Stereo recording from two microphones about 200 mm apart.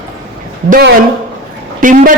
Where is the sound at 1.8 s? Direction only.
40° right (ahead or behind).